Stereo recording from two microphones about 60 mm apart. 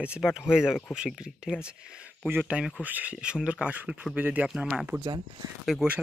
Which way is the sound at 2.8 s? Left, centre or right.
Right.